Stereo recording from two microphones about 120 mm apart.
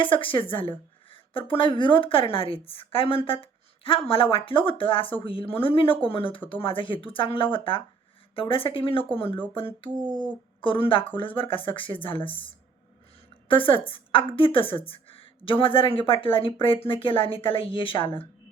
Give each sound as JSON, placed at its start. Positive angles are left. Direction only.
{"t": 0.0, "sound": "speech", "side_deg": 45}
{"t": 10.0, "sound": "speech", "side_deg": -35}
{"t": 10.6, "sound": "speech", "side_deg": 45}
{"t": 13.5, "sound": "a woman's voice", "side_deg": 45}